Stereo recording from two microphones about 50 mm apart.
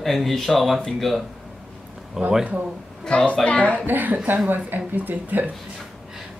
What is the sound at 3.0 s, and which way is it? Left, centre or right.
Speech, left.